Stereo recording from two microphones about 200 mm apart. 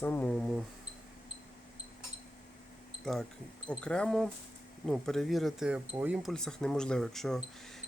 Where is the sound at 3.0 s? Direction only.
5° left (ahead or behind).